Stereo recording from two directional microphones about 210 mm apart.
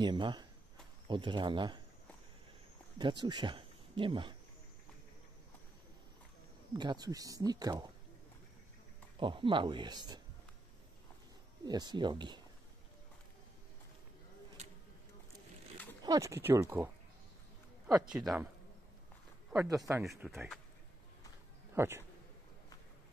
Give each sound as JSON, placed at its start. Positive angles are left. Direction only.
{"t": 0.0, "sound": "speech", "side_deg": -20}
{"t": 3.0, "sound": "speech", "side_deg": -20}
{"t": 6.7, "sound": "speech", "side_deg": -20}
{"t": 9.2, "sound": "speech", "side_deg": -25}
{"t": 11.6, "sound": "speech", "side_deg": -20}
{"t": 16.0, "sound": "speech", "side_deg": -15}
{"t": 18.1, "sound": "speech", "side_deg": 0}
{"t": 19.7, "sound": "speech", "side_deg": -15}
{"t": 20.1, "sound": "speech", "side_deg": 0}
{"t": 21.7, "sound": "speech", "side_deg": -10}